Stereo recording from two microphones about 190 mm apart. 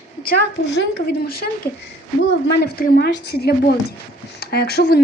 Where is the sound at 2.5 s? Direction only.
55° left (ahead or behind).